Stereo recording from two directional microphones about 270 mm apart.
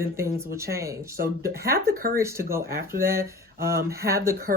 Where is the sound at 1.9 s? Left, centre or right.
Right.